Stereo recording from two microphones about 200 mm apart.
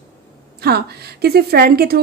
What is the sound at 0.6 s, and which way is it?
Speech, 55° right (ahead or behind).